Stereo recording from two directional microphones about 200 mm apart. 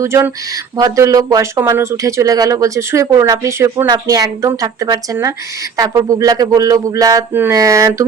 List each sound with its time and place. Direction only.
0.0 s speech: 15° right (ahead or behind)